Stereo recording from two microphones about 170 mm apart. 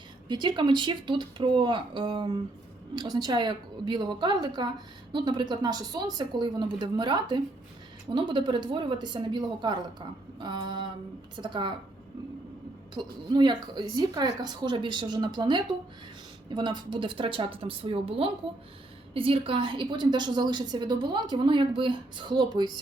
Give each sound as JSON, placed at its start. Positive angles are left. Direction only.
{"t": 0.3, "sound": "a woman's voice", "side_deg": -25}
{"t": 12.9, "sound": "a woman's voice", "side_deg": -25}